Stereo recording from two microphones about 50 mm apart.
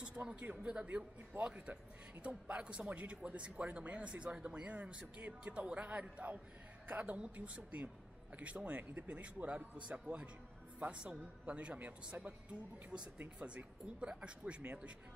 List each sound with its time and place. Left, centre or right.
0.0 s a man's voice: right
1.3 s speech: right
1.7 s a woman's voice: right